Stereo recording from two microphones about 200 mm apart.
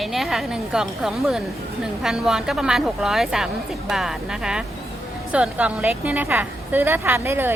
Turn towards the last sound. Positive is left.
turn(degrees=-10)  # may be behind; listen again after turning